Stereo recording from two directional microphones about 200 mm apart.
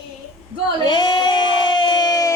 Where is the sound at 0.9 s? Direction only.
20° left (ahead or behind).